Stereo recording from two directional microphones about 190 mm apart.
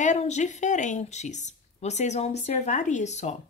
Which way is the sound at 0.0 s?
40° left (ahead or behind).